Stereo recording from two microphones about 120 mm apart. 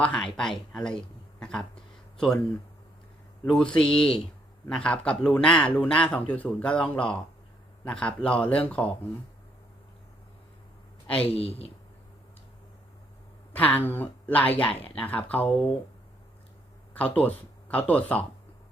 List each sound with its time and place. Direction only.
0.0 s a man's voice: 5° left (ahead or behind)
3.4 s a man's voice: 5° left (ahead or behind)
11.3 s speech: 55° left (ahead or behind)
13.5 s a man's voice: 15° left (ahead or behind)
16.9 s speech: 15° left (ahead or behind)